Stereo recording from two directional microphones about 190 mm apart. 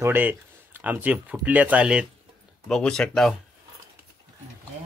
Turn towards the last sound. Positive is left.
turn(degrees=0)  # may be behind; listen again after turning